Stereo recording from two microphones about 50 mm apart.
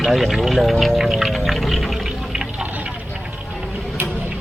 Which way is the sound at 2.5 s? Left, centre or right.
Right.